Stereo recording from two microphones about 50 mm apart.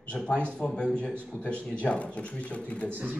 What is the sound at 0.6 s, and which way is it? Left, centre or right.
Speech, left.